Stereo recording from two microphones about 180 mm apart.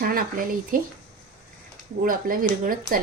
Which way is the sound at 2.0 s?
50° right (ahead or behind).